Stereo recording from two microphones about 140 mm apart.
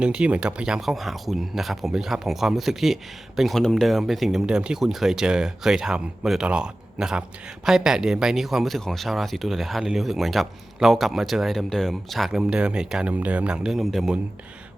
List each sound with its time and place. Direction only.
0.0 s speech: 10° right (ahead or behind)